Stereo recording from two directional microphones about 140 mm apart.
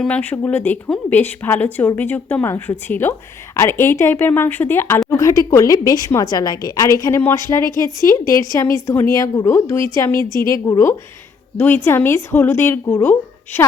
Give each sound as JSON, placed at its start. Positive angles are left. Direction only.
{"t": 0.0, "sound": "a woman's voice", "side_deg": 10}